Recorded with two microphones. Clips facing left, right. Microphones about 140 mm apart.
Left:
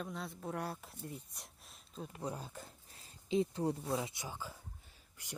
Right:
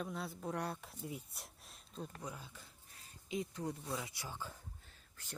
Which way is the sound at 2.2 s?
35° left (ahead or behind).